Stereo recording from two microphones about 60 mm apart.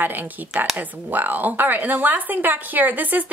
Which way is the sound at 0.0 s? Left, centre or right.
Right.